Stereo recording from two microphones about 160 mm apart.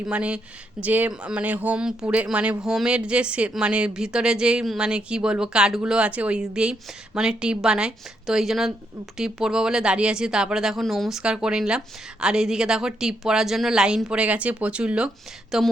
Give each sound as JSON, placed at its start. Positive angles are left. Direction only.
{"t": 0.0, "sound": "a woman's voice", "side_deg": -5}